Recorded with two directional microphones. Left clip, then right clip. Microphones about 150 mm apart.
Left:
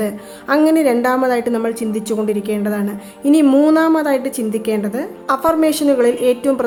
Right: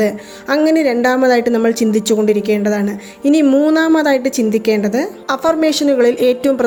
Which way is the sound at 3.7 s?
20° right (ahead or behind).